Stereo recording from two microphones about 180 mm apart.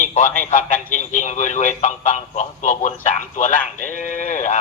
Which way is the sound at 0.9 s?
45° left (ahead or behind).